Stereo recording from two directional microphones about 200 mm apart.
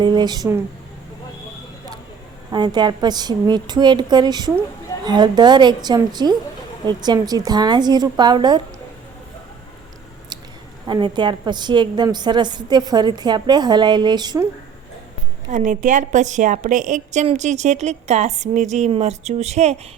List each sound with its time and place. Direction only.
0.0 s a woman's voice: 20° right (ahead or behind)
2.5 s a woman's voice: 20° right (ahead or behind)
10.8 s a woman's voice: 20° right (ahead or behind)
15.4 s a woman's voice: 40° right (ahead or behind)